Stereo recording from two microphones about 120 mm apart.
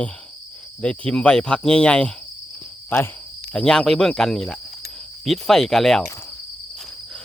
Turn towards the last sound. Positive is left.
turn(degrees=5)  # may be behind; listen again after turning